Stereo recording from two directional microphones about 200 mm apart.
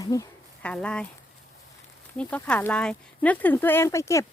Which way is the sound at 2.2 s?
5° left (ahead or behind).